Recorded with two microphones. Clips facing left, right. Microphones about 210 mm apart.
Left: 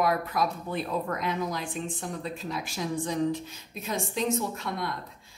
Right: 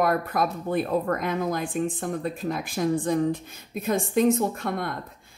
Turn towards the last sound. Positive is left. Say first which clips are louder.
# right 4 dB
turn(degrees=-55)  # may be behind; listen again after turning